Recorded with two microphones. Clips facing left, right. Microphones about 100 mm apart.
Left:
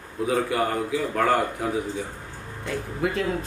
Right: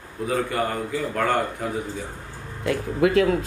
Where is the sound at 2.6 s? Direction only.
85° right.